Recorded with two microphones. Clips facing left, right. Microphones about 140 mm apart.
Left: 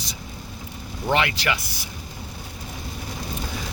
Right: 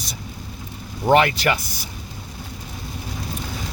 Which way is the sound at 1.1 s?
45° right (ahead or behind).